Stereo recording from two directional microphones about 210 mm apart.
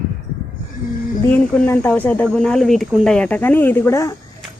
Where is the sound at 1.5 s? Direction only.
5° left (ahead or behind).